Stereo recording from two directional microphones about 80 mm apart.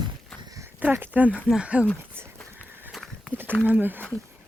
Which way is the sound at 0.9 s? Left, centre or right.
Right.